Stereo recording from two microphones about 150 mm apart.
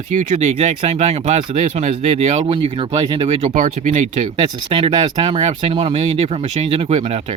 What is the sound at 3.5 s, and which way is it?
Speech, 65° right (ahead or behind).